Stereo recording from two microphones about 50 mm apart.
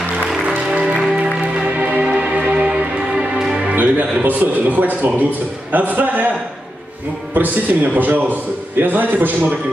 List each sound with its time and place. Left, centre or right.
0.5 s music: right
4.2 s a man's voice: right
7.3 s a man's voice: right